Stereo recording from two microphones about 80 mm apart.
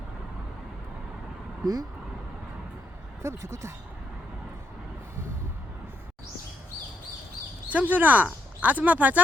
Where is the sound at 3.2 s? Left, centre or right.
Right.